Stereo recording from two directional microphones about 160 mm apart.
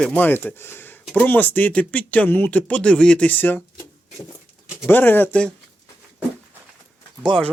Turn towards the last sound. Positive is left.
turn(degrees=5)  # may be behind; listen again after turning